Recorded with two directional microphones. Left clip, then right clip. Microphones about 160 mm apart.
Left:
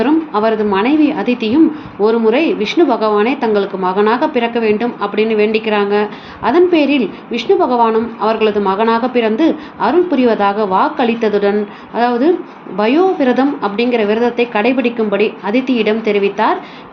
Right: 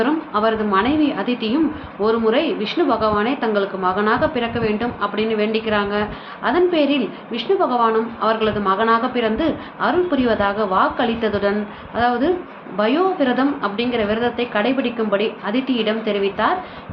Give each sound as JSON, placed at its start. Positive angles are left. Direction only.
{"t": 0.0, "sound": "a woman's voice", "side_deg": 25}